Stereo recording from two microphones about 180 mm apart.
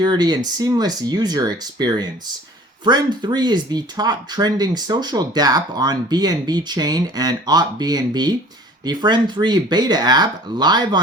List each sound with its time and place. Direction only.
0.0 s speech: 25° right (ahead or behind)